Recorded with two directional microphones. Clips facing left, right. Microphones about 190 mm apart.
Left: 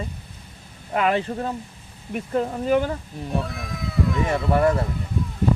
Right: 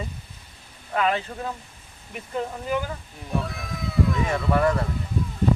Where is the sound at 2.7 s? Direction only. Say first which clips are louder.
Left 8 dB; 40° left (ahead or behind).